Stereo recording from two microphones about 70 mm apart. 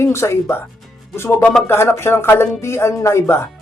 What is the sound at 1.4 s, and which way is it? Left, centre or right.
Speech, centre.